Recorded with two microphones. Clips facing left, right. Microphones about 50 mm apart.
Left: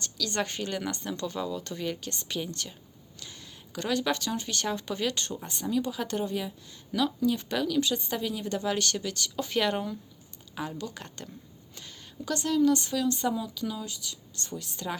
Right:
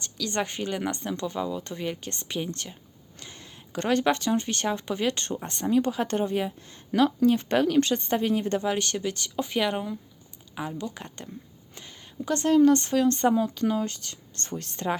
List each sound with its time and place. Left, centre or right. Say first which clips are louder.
0.2 s speech: right 2 dB; right
8.6 s speech: right 2 dB; right